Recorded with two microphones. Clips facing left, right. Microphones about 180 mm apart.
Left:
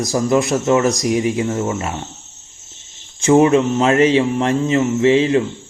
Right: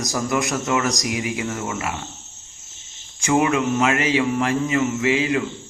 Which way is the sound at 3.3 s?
30° left (ahead or behind).